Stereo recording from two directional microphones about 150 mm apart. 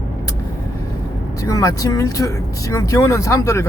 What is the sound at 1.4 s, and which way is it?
Speech, 20° left (ahead or behind).